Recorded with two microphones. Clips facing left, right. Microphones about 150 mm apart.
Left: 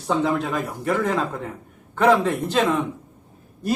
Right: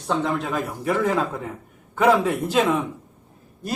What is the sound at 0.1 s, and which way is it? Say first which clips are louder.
A man's voice: left 2 dB; centre (ahead or behind).